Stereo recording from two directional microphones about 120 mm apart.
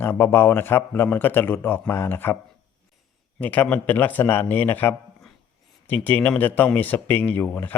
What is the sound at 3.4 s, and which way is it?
Speech, 15° left (ahead or behind).